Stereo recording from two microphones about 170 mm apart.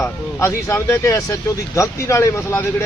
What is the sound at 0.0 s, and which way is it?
Speech, 15° left (ahead or behind).